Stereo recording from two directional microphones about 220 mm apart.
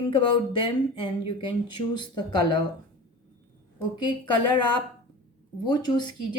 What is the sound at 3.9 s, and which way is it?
Speech, 20° left (ahead or behind).